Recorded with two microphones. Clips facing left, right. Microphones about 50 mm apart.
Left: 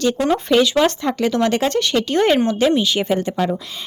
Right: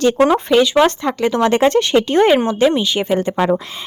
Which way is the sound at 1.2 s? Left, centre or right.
Centre.